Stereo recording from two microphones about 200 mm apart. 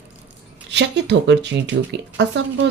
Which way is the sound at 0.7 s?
60° right (ahead or behind).